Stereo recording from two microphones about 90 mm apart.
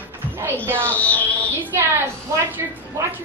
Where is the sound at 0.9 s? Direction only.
15° left (ahead or behind).